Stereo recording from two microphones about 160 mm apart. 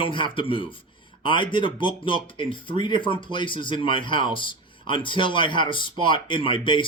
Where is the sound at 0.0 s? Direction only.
30° left (ahead or behind).